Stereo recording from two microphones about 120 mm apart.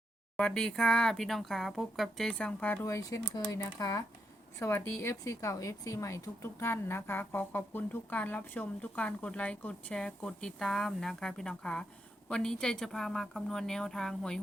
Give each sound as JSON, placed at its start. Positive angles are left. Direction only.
{"t": 0.3, "sound": "speech", "side_deg": 5}
{"t": 2.8, "sound": "speech", "side_deg": 25}